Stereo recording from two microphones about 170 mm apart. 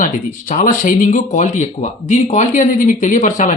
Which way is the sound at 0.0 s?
50° left (ahead or behind).